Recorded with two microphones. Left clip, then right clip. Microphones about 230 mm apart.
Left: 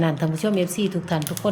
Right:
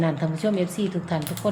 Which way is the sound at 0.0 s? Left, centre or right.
Left.